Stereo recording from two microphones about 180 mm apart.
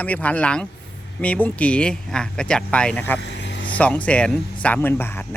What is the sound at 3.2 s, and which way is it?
Vehicle, 80° left.